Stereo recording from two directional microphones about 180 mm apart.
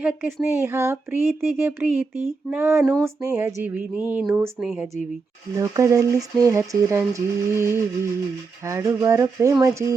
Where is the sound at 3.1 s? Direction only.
15° right (ahead or behind).